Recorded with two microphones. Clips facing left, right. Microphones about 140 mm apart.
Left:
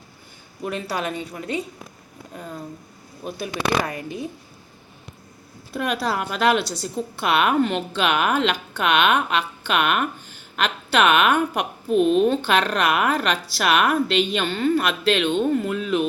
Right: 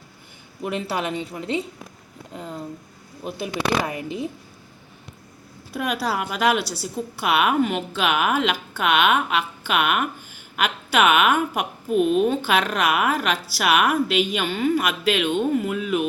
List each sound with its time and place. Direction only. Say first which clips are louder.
0.6 s a woman's voice: right 1 dB; 20° right (ahead or behind)
5.7 s a woman's voice: left 1 dB; 10° right (ahead or behind)